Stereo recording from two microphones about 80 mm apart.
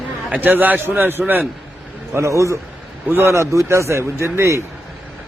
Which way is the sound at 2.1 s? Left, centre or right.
Right.